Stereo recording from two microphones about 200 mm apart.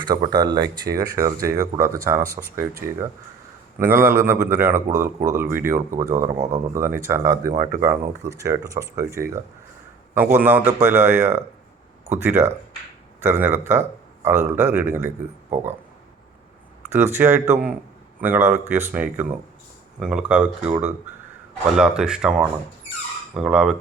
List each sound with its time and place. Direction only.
0.0 s speech: 20° right (ahead or behind)
6.2 s speech: 35° right (ahead or behind)
6.5 s speech: 15° right (ahead or behind)
16.9 s speech: 10° right (ahead or behind)